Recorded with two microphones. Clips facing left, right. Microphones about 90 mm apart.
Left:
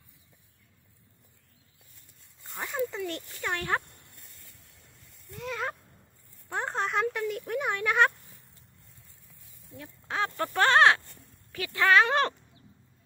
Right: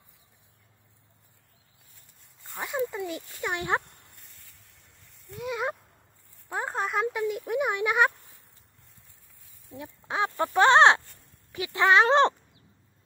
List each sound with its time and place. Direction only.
2.5 s a sound: 10° right (ahead or behind)
3.1 s speech: 10° right (ahead or behind)
5.3 s speech: 10° right (ahead or behind)
9.7 s speech: 15° right (ahead or behind)